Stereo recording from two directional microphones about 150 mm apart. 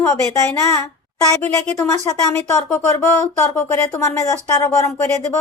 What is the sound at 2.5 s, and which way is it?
Speech, 20° left (ahead or behind).